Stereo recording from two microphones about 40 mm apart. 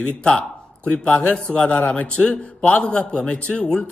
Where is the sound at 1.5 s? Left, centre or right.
Left.